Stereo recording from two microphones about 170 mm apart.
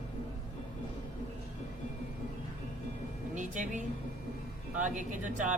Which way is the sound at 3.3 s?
45° right (ahead or behind).